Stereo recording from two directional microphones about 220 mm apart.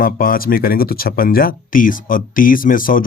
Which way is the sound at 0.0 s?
40° left (ahead or behind).